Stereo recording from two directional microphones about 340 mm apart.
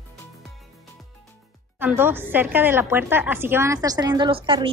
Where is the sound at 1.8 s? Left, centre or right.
Centre.